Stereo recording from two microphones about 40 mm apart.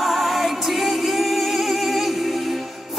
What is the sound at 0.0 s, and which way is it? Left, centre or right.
Music, centre.